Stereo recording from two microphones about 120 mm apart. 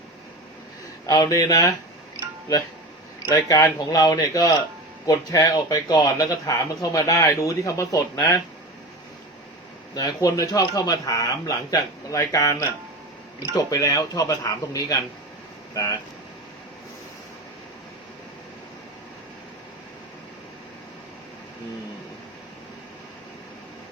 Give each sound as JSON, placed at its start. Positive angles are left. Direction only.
{"t": 1.0, "sound": "speech", "side_deg": 30}
{"t": 3.2, "sound": "speech", "side_deg": 30}
{"t": 9.9, "sound": "speech", "side_deg": 30}